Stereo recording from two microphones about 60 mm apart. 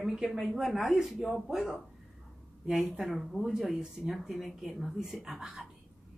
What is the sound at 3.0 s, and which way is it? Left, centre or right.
Speech, centre.